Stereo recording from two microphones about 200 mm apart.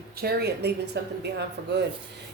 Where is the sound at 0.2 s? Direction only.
50° right (ahead or behind).